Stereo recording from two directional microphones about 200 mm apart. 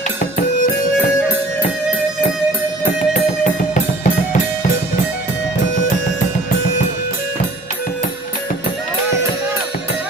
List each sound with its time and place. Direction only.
0.2 s music: 45° left (ahead or behind)
3.1 s music: 40° left (ahead or behind)